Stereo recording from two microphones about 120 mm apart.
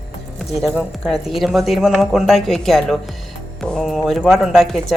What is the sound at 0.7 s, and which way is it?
Speech, centre (ahead or behind).